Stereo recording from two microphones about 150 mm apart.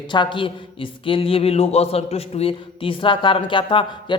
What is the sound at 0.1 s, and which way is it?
Speech, 30° left (ahead or behind).